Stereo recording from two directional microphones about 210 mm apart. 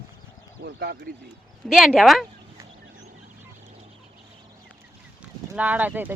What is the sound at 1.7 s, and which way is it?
Speech, centre (ahead or behind).